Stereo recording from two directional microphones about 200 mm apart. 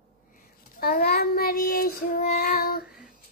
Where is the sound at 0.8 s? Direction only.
50° left (ahead or behind).